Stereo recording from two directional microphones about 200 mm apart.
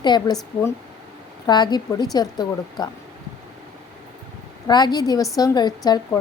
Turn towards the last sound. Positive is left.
turn(degrees=20)  # may be behind; listen again after turning